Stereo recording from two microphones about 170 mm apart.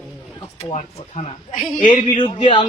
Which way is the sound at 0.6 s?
35° left (ahead or behind).